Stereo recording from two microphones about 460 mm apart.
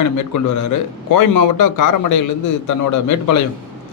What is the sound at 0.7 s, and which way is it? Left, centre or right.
A man's voice, left.